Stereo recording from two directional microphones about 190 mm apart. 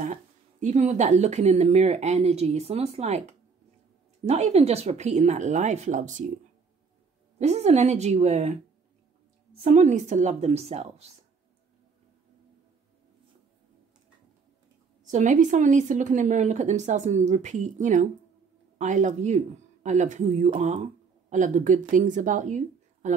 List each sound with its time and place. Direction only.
0.0 s speech: 40° right (ahead or behind)
7.3 s speech: 35° right (ahead or behind)
9.6 s speech: 35° right (ahead or behind)
15.0 s speech: 40° right (ahead or behind)